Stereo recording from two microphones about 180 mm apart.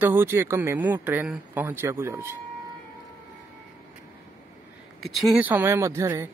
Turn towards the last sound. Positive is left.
turn(degrees=-15)  # may be behind; listen again after turning